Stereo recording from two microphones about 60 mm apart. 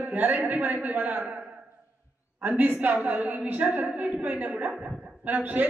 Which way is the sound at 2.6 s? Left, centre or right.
Right.